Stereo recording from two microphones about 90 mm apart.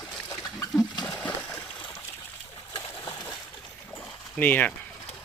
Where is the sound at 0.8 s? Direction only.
55° left (ahead or behind).